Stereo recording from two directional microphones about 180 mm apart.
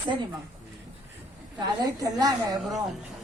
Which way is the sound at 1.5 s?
20° right (ahead or behind).